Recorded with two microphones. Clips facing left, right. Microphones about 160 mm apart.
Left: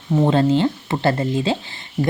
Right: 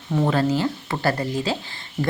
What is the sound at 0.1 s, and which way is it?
Speech, 20° left (ahead or behind).